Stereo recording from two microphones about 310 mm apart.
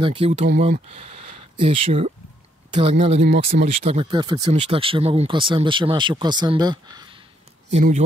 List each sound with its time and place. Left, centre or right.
0.0 s speech: centre
3.2 s speech: right
3.6 s speech: centre